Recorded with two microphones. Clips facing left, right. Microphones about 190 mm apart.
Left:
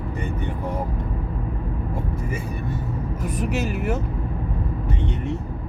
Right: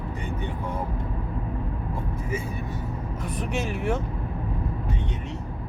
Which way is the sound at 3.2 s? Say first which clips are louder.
Left 4 dB; 10° left (ahead or behind).